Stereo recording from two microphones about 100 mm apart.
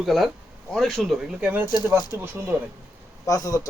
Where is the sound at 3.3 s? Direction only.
35° left (ahead or behind).